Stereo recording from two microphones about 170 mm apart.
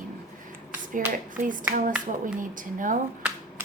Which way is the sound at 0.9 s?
50° right (ahead or behind).